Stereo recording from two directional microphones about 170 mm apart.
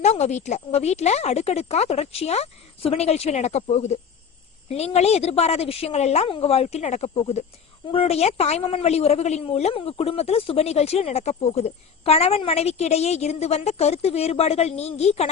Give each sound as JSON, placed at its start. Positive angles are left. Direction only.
{"t": 0.0, "sound": "a woman's voice", "side_deg": 40}